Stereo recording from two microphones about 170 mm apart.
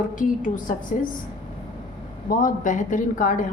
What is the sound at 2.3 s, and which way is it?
A woman's voice, 50° left (ahead or behind).